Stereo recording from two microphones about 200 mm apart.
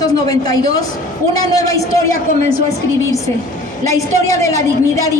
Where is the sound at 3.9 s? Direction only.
15° left (ahead or behind).